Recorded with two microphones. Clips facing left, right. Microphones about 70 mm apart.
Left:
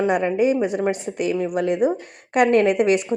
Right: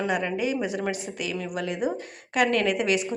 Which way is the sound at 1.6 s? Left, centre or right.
Left.